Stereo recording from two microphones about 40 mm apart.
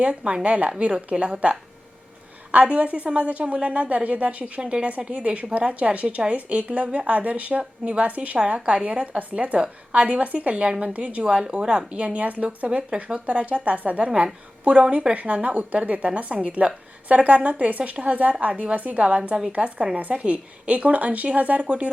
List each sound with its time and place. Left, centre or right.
0.0 s a woman's voice: right
12.5 s a woman's voice: right
13.1 s a woman's voice: right